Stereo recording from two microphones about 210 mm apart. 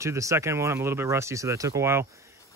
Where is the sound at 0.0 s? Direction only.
15° right (ahead or behind).